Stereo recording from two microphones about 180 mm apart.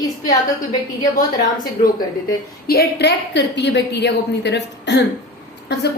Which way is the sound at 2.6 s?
65° left (ahead or behind).